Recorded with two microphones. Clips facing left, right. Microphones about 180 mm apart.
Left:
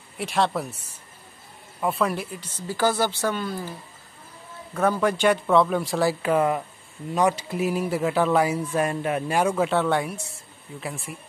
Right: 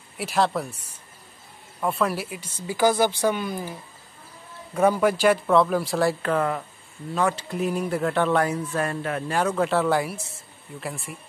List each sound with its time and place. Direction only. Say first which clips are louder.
0.2 s speech: right 1 dB; centre (ahead or behind)
1.8 s speech: even; centre (ahead or behind); by 3.7 s 15° right (ahead or behind)
4.7 s speech: right 2 dB; 10° right (ahead or behind)
6.3 s speech: left 3 dB; 15° left (ahead or behind)
9.7 s speech: right 1 dB; centre (ahead or behind)